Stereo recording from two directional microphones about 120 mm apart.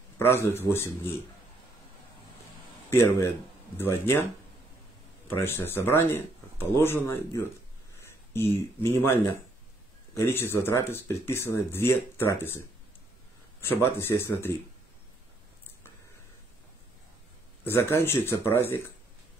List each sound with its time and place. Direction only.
0.2 s speech: 20° left (ahead or behind)
2.9 s speech: 20° left (ahead or behind)
5.3 s speech: 20° left (ahead or behind)
8.5 s speech: 20° left (ahead or behind)
13.9 s speech: 20° left (ahead or behind)
17.6 s speech: 20° left (ahead or behind)